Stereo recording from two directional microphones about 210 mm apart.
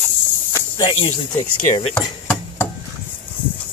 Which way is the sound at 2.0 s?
10° left (ahead or behind).